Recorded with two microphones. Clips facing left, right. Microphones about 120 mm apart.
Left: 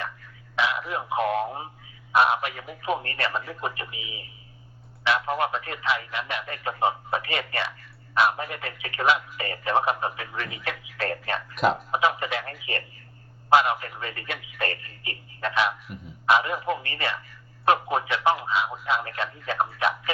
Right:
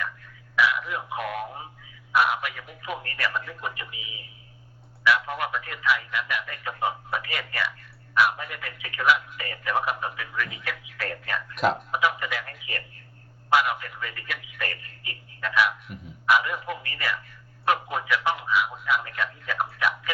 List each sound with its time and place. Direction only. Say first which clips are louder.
0.5 s speech: right 1 dB; 25° left (ahead or behind)
5.0 s speech: even; 30° left (ahead or behind)
11.5 s speech: left 1 dB; centre (ahead or behind)
11.9 s speech: left 2 dB; 25° left (ahead or behind)